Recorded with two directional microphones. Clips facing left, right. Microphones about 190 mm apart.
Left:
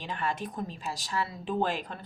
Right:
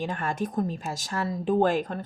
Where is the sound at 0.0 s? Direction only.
45° right (ahead or behind).